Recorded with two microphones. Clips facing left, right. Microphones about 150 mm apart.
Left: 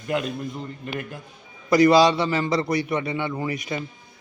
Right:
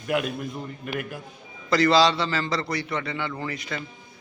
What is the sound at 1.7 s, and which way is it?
A man's voice, 20° left (ahead or behind).